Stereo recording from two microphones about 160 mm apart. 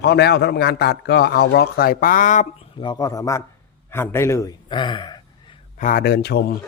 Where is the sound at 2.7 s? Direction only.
30° left (ahead or behind).